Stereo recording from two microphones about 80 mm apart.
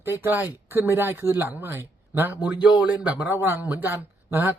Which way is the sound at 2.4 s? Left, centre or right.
Centre.